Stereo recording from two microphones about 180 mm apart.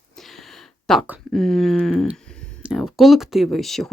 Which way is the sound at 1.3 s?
Centre (ahead or behind).